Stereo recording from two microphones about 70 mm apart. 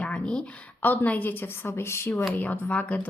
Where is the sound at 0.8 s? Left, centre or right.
Left.